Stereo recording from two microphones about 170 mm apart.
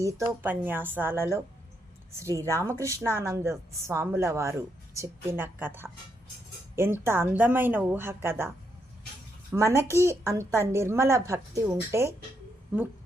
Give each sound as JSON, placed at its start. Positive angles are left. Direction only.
{"t": 0.0, "sound": "a woman's voice", "side_deg": -20}
{"t": 2.5, "sound": "a woman's voice", "side_deg": -15}